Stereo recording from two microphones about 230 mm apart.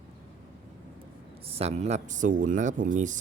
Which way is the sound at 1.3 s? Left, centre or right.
Right.